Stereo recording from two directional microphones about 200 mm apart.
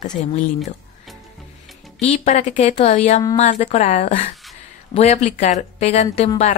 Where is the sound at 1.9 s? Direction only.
35° left (ahead or behind).